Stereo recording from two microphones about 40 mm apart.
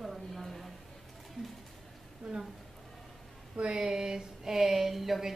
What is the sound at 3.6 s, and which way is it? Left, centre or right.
Speech, right.